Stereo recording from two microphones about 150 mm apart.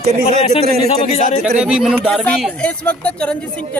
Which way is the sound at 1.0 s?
45° left (ahead or behind).